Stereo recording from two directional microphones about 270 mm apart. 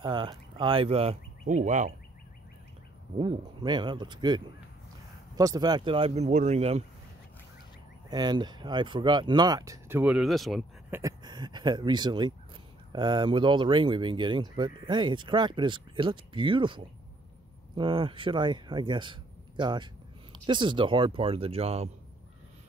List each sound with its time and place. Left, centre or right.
0.0 s speech: centre
3.2 s speech: centre
8.1 s speech: centre
11.0 s speech: centre